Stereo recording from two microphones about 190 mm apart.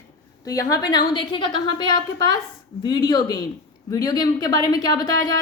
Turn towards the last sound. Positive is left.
turn(degrees=20)  # may be behind; listen again after turning